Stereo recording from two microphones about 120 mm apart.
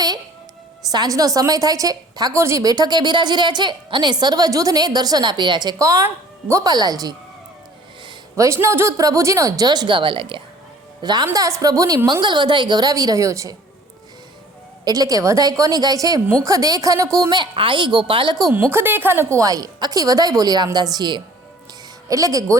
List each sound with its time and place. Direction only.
0.9 s a woman's voice: 30° right (ahead or behind)
8.4 s a woman's voice: 25° right (ahead or behind); by 10.4 s 45° right (ahead or behind)
11.0 s a woman's voice: 35° right (ahead or behind)
14.8 s a woman's voice: 30° right (ahead or behind)
18.5 s a woman's voice: 15° right (ahead or behind)